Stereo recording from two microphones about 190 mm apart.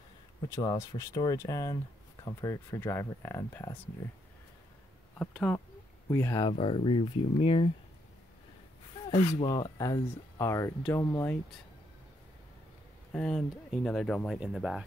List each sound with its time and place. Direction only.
0.5 s speech: 20° left (ahead or behind)
5.2 s speech: centre (ahead or behind)
6.0 s speech: 15° left (ahead or behind)
6.5 s speech: 30° left (ahead or behind)
9.1 s speech: 35° left (ahead or behind)
9.5 s speech: 20° left (ahead or behind)
13.1 s speech: 5° left (ahead or behind)